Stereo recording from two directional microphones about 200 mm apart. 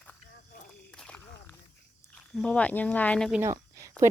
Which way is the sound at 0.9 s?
5° left (ahead or behind).